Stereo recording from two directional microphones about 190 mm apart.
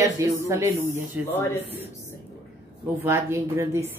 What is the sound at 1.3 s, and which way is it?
Speech, 10° left (ahead or behind).